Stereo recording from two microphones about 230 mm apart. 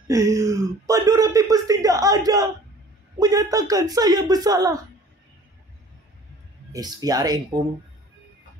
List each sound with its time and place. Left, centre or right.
0.1 s speech: centre
6.7 s speech: centre